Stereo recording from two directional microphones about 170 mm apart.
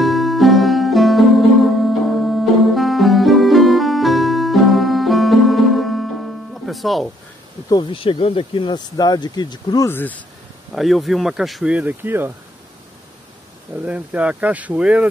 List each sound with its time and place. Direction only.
0.0 s music: centre (ahead or behind)
7.7 s speech: 30° left (ahead or behind); by 10.1 s 15° left (ahead or behind)
10.7 s speech: centre (ahead or behind)
13.7 s speech: 10° right (ahead or behind)